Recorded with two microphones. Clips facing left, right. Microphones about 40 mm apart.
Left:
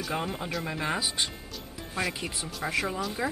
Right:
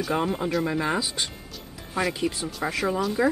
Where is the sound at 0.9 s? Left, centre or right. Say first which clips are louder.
Right 2 dB; centre.